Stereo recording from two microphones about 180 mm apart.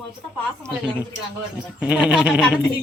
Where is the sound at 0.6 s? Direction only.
15° right (ahead or behind).